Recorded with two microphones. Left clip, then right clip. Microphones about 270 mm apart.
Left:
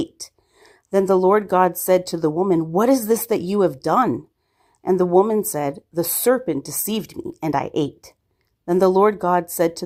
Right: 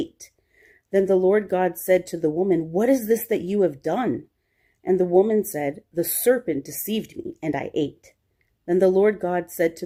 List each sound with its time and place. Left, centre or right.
0.0 s a woman's voice: left